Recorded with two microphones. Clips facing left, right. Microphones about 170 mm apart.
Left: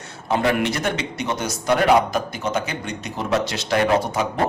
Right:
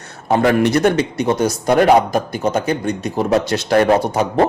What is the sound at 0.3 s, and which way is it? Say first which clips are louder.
A man's voice: right 6 dB; 45° right (ahead or behind).